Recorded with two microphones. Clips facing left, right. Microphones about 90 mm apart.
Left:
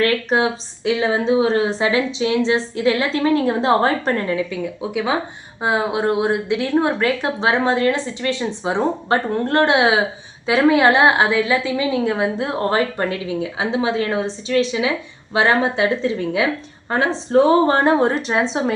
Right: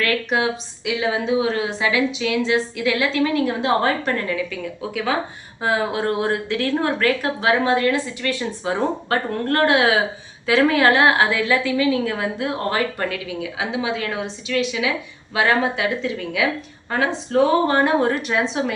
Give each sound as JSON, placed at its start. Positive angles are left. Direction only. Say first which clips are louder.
{"t": 0.0, "sound": "a woman's voice", "louder": "left 3 dB", "side_deg": 30}